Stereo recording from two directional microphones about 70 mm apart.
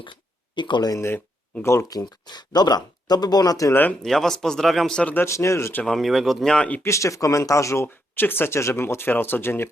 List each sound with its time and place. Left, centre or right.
0.5 s speech: left
0.9 s speech: left
1.9 s speech: left
3.7 s speech: left
4.0 s speech: centre
5.1 s speech: left
5.8 s speech: centre
6.6 s speech: centre
6.8 s speech: left
8.1 s speech: left